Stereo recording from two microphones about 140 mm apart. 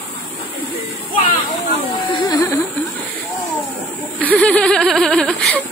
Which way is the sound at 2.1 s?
25° left (ahead or behind).